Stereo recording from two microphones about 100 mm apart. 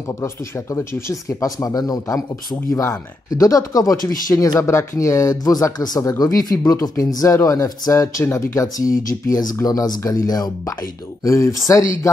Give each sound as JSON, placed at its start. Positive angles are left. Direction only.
{"t": 0.2, "sound": "speech", "side_deg": 25}